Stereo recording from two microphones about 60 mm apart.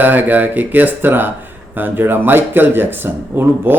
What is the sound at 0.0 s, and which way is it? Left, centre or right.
Speech, right.